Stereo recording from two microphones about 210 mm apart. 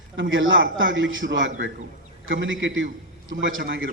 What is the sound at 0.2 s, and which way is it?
A man's voice, 65° right (ahead or behind).